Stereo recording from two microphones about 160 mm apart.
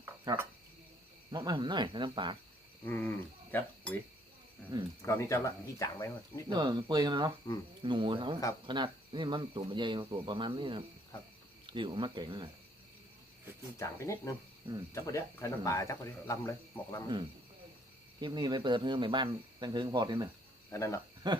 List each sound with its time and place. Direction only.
0.0 s cricket: 15° right (ahead or behind)
1.3 s speech: 30° right (ahead or behind)
2.8 s speech: 15° left (ahead or behind)
5.0 s speech: 15° left (ahead or behind)
6.5 s speech: 30° right (ahead or behind)
13.7 s speech: 15° left (ahead or behind)
18.2 s speech: 25° right (ahead or behind)
20.7 s speech: 20° left (ahead or behind)
21.2 s speech: 25° right (ahead or behind)